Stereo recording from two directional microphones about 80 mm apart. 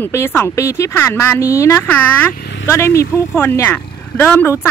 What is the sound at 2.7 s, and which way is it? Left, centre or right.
Speech, left.